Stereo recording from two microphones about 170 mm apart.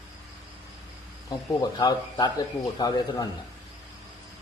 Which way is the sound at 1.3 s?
25° left (ahead or behind).